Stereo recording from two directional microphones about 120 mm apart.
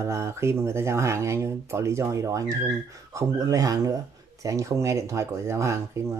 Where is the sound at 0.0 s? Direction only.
25° right (ahead or behind).